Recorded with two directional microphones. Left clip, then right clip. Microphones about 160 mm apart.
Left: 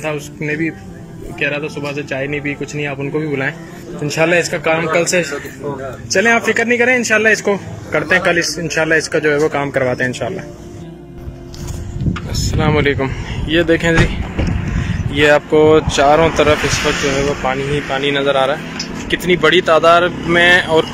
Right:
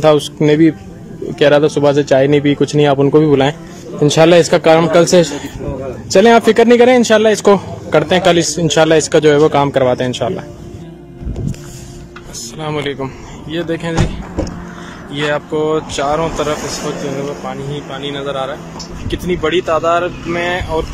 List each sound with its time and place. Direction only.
0.0 s a man's voice: 35° right (ahead or behind); by 10.4 s 15° right (ahead or behind)
12.4 s speech: centre (ahead or behind)
19.0 s speech: 10° right (ahead or behind)